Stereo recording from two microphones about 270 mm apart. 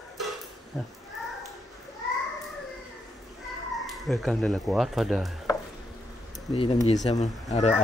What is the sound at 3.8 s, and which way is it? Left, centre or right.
Speech, centre.